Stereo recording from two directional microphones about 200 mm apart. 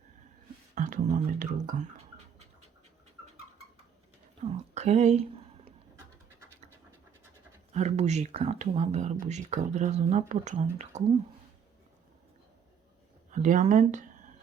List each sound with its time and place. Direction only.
0.8 s speech: 40° right (ahead or behind)
4.5 s speech: 35° right (ahead or behind)
7.7 s speech: 35° right (ahead or behind)
13.3 s speech: 40° right (ahead or behind)